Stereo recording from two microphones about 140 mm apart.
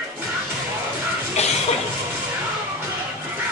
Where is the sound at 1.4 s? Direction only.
50° left (ahead or behind).